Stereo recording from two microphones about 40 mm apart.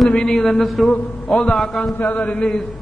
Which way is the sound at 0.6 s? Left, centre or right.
Centre.